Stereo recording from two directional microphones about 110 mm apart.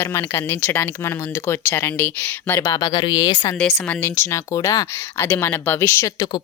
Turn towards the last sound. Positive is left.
turn(degrees=25)  # may be behind; listen again after turning